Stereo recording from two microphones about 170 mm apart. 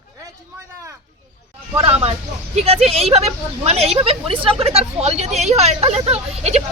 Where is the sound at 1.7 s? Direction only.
35° right (ahead or behind).